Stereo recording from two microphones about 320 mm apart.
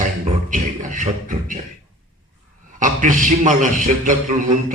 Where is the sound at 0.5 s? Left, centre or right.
Right.